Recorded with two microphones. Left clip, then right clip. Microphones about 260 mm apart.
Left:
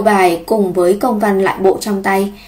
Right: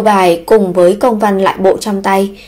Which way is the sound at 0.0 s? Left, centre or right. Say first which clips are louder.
Right 2 dB; right.